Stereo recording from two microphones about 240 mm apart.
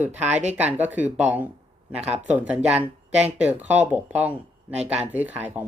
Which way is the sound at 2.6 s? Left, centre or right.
Centre.